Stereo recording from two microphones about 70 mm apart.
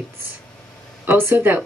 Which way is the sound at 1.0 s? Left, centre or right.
Right.